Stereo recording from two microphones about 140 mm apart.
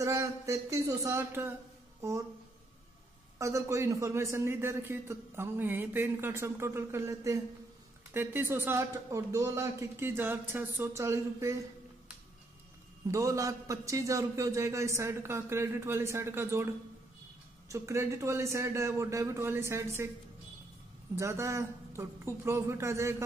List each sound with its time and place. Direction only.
0.0 s a man's voice: 20° right (ahead or behind)
3.3 s a man's voice: 20° right (ahead or behind)
13.1 s a man's voice: 25° right (ahead or behind)
21.2 s a man's voice: 20° right (ahead or behind)